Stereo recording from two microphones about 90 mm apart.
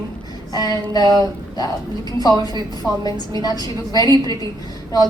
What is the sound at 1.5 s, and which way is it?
A woman's voice, 45° left (ahead or behind).